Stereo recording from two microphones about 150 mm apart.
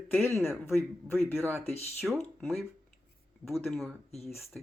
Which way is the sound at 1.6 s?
45° left (ahead or behind).